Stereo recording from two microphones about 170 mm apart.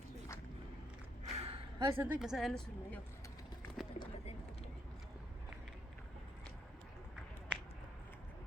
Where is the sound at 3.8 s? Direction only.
Centre (ahead or behind).